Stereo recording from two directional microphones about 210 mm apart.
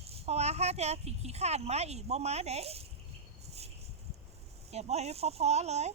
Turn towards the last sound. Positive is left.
turn(degrees=-30)  # may be behind; listen again after turning